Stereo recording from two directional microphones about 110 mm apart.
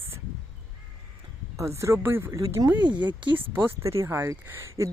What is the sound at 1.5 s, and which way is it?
Speech, 25° right (ahead or behind).